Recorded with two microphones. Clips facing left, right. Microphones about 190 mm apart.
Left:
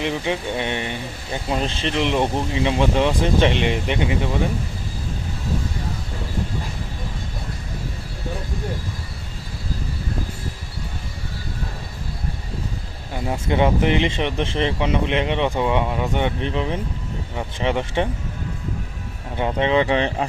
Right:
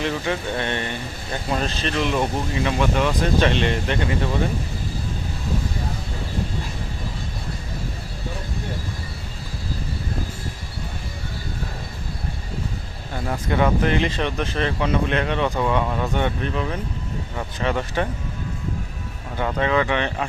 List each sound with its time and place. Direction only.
0.0 s speech: 15° left (ahead or behind)
13.1 s speech: 20° left (ahead or behind)
19.4 s speech: 25° left (ahead or behind)